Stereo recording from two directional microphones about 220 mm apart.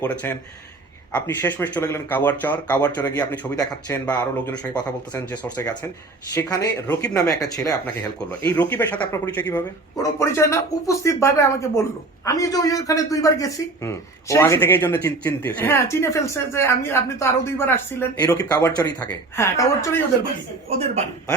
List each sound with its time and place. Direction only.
0.0 s speech: 5° left (ahead or behind)
20.7 s a man's voice: 30° right (ahead or behind)